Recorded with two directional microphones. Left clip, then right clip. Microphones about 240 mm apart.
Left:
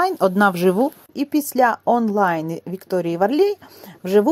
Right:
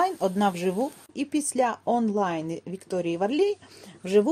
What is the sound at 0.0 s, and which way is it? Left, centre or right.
Speech, left.